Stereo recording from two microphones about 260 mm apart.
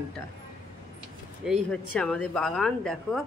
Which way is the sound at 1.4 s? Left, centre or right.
Centre.